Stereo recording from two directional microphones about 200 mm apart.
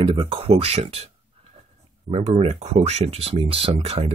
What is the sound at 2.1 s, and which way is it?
Speech, 30° right (ahead or behind).